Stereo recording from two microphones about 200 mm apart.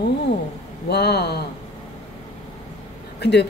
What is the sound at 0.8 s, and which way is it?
Speech, 55° left (ahead or behind).